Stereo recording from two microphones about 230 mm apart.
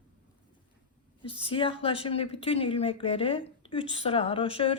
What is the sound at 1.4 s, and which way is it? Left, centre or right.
Speech, left.